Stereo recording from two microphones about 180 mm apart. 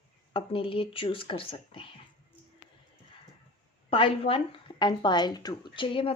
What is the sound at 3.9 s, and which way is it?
Speech, 30° left (ahead or behind).